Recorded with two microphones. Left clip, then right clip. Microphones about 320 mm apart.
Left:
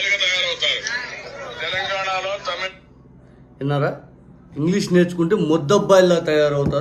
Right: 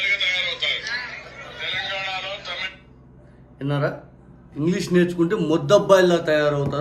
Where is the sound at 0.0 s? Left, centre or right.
Centre.